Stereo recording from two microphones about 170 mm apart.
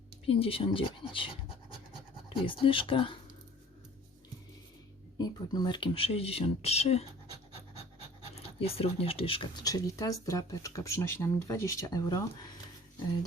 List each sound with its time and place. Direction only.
0.3 s speech: 35° left (ahead or behind)
5.1 s speech: 25° left (ahead or behind)
8.4 s speech: 35° left (ahead or behind)